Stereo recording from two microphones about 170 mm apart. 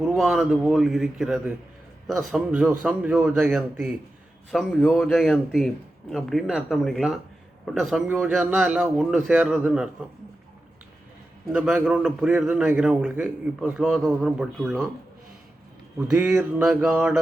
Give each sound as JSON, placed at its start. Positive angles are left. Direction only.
{"t": 0.2, "sound": "a man's voice", "side_deg": 0}
{"t": 2.5, "sound": "a sound", "side_deg": -10}
{"t": 4.5, "sound": "a man's voice", "side_deg": 5}
{"t": 11.4, "sound": "a man's voice", "side_deg": -5}
{"t": 13.7, "sound": "a man's voice", "side_deg": 0}
{"t": 16.0, "sound": "a sound", "side_deg": -15}